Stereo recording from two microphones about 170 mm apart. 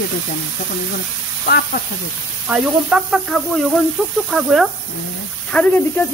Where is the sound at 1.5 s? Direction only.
60° left (ahead or behind).